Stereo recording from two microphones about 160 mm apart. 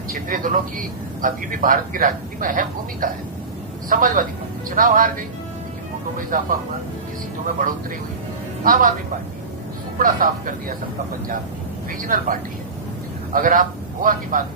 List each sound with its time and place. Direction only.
0.1 s a man's voice: 55° right (ahead or behind)
6.3 s a man's voice: 60° right (ahead or behind)
10.0 s a man's voice: 55° right (ahead or behind)
11.9 s a man's voice: 60° right (ahead or behind)